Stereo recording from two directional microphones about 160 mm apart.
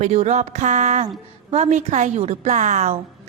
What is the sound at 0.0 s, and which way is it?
A woman's voice, 45° right (ahead or behind).